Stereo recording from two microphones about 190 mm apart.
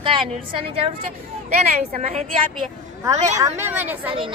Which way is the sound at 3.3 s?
15° right (ahead or behind).